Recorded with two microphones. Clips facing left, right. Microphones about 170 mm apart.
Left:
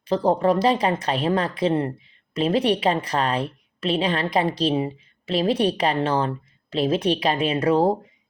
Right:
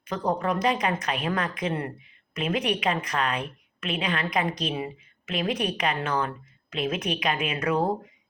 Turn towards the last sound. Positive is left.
turn(degrees=30)  # may be behind; listen again after turning